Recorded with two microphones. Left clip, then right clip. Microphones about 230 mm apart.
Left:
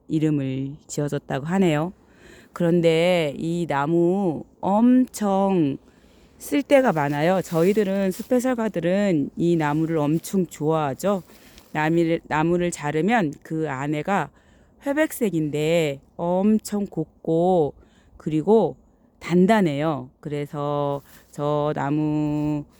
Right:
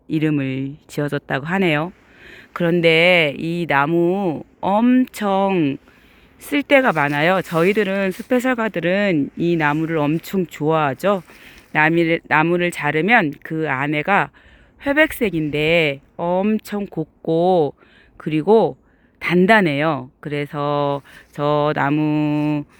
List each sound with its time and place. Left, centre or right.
0.1 s speech: centre